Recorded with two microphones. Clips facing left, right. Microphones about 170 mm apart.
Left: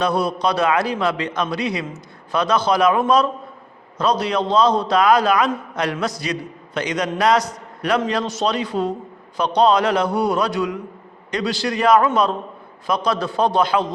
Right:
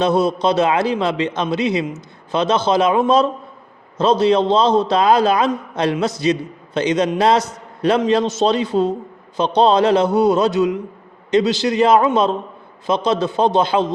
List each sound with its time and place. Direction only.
0.0 s a man's voice: 25° right (ahead or behind)